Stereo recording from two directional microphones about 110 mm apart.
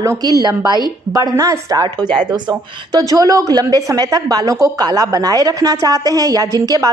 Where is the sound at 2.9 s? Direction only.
35° right (ahead or behind).